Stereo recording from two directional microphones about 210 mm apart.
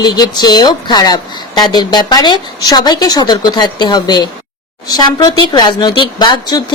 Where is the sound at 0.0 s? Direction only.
20° left (ahead or behind).